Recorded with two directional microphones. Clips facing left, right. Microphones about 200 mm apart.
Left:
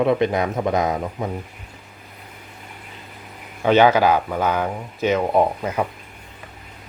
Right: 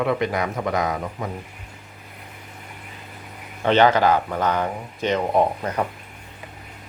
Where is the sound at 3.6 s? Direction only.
10° left (ahead or behind).